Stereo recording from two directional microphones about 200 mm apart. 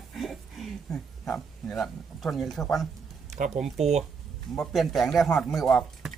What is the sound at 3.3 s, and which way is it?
Speech, 40° right (ahead or behind).